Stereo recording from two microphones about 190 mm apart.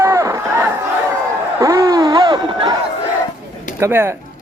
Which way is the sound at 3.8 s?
15° right (ahead or behind).